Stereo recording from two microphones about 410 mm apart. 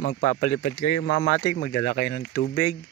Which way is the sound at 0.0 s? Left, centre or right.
Left.